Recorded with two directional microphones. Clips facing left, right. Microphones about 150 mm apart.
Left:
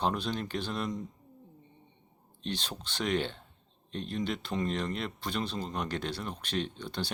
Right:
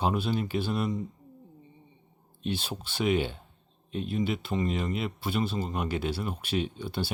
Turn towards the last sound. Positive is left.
turn(degrees=-5)  # may be behind; listen again after turning